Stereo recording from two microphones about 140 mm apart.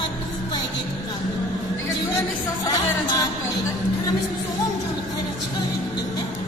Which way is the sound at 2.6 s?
25° left (ahead or behind).